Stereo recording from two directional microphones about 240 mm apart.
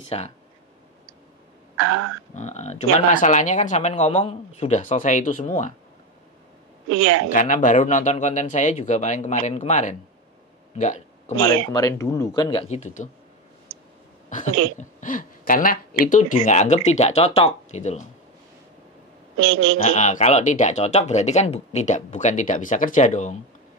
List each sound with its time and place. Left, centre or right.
0.1 s speech: left
1.8 s a woman's voice: right
2.3 s speech: left
6.9 s a woman's voice: right
7.2 s speech: left
11.7 s speech: centre
14.8 s speech: left
19.3 s a woman's voice: right
19.8 s speech: left